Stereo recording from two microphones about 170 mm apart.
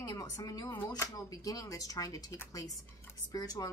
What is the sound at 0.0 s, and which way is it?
A woman's voice, 20° left (ahead or behind).